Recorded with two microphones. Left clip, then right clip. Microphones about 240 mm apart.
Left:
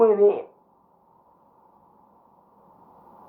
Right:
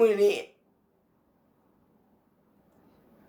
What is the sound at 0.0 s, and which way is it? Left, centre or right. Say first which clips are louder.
Speech: left 5 dB; centre.